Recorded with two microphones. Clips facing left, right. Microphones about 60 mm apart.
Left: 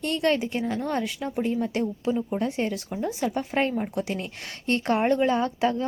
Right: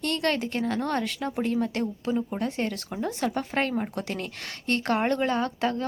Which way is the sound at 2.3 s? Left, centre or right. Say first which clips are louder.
Left 2 dB; centre.